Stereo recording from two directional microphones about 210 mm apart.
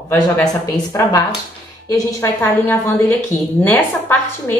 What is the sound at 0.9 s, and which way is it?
A woman's voice, 15° left (ahead or behind).